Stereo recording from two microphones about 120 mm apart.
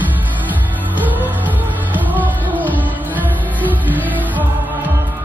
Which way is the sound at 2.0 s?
15° right (ahead or behind).